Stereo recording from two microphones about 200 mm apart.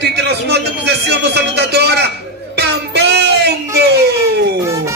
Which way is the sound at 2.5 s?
55° right (ahead or behind).